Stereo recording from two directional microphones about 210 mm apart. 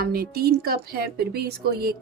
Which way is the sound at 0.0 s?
45° right (ahead or behind).